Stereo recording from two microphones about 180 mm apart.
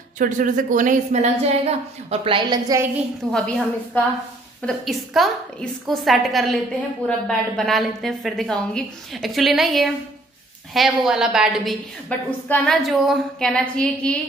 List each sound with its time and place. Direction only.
0.2 s a woman's voice: 45° right (ahead or behind); by 2.8 s 25° right (ahead or behind)
3.3 s a woman's voice: centre (ahead or behind)
12.1 s a woman's voice: 5° left (ahead or behind)